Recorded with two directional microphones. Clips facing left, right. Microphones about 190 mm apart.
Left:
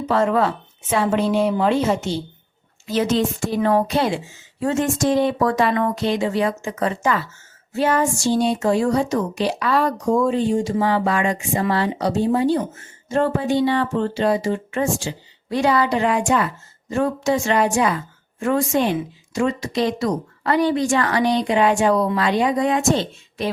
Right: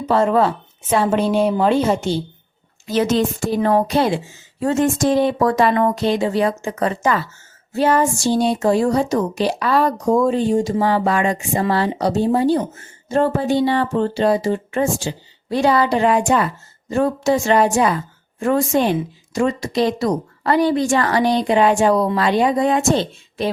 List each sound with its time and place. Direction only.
0.1 s speech: 30° right (ahead or behind)
2.8 s speech: 45° right (ahead or behind)